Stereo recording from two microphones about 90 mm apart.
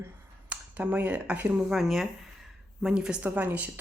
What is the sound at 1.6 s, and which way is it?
Speech, centre (ahead or behind).